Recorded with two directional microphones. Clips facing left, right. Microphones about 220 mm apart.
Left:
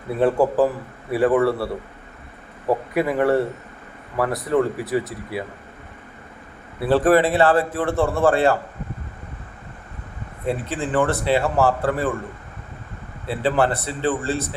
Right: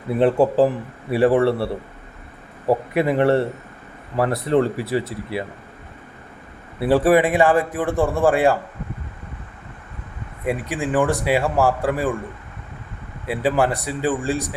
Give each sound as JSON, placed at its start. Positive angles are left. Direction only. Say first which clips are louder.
{"t": 0.2, "sound": "speech", "louder": "right 2 dB", "side_deg": -20}
{"t": 6.8, "sound": "a man's voice", "louder": "right 1 dB", "side_deg": -10}
{"t": 10.4, "sound": "a man's voice", "louder": "right 1 dB", "side_deg": -15}
{"t": 13.2, "sound": "a man's voice", "louder": "right 1 dB", "side_deg": -10}